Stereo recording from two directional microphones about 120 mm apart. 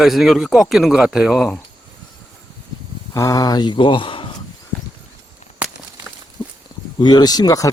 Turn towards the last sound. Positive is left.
turn(degrees=30)  # may be behind; listen again after turning